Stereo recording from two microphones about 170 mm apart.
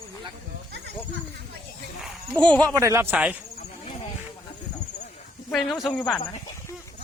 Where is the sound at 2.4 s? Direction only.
20° right (ahead or behind).